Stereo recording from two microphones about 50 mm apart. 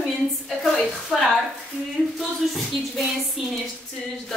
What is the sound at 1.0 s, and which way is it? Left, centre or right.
Speech, centre.